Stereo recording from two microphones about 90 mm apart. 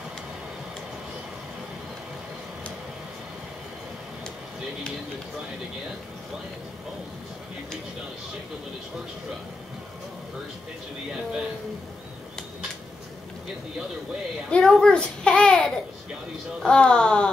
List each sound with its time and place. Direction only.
14.5 s a child's voice: 5° left (ahead or behind)